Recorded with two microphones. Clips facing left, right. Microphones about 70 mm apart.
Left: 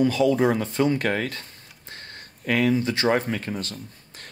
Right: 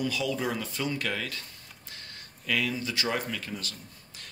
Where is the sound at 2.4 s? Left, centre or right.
Left.